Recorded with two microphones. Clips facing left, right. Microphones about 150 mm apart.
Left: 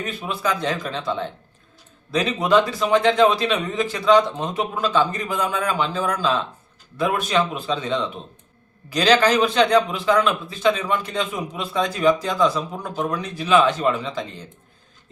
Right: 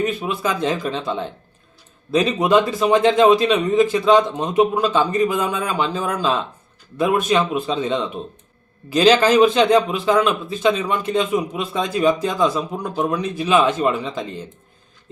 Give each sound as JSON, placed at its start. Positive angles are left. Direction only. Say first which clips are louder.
{"t": 0.0, "sound": "speech", "louder": "right 4 dB", "side_deg": -20}